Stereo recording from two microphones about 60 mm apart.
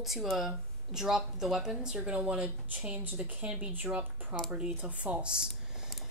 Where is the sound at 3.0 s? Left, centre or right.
Right.